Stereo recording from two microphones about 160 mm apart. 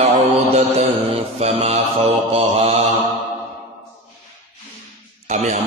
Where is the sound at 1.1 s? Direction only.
40° right (ahead or behind).